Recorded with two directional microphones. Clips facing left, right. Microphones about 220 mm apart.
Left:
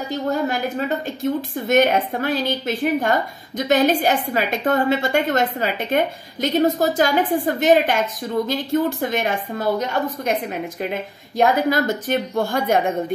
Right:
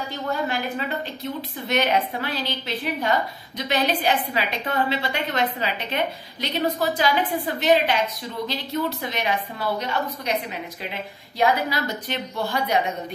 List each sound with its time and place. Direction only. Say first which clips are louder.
0.1 s a woman's voice: left 6 dB; 45° left (ahead or behind)